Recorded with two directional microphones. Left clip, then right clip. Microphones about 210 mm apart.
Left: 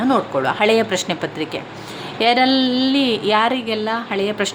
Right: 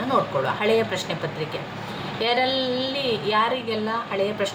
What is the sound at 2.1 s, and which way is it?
A woman's voice, 50° left (ahead or behind).